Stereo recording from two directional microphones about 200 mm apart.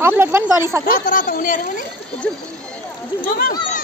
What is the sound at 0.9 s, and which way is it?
Speech, 45° left (ahead or behind).